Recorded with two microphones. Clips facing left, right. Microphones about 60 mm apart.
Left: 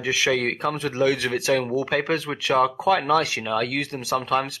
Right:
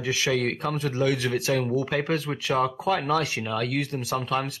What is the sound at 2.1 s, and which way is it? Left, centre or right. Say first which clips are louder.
Speech: left 2 dB; left.